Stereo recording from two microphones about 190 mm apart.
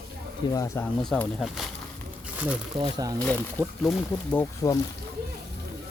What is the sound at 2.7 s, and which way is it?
Speech, 20° right (ahead or behind).